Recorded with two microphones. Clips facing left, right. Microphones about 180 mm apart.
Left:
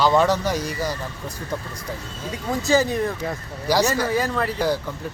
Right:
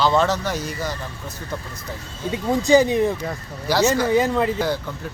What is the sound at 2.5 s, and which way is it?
Speech, 15° right (ahead or behind).